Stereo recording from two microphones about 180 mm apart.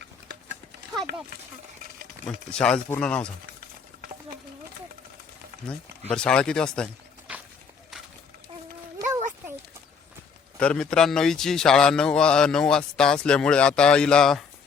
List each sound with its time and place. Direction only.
2.2 s a man's voice: 5° left (ahead or behind)
5.6 s a man's voice: 5° left (ahead or behind)
9.0 s a sound: 20° right (ahead or behind)
10.6 s a man's voice: 5° left (ahead or behind)